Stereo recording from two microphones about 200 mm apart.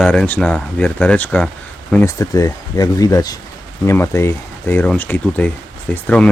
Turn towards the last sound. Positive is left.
turn(degrees=5)  # may be behind; listen again after turning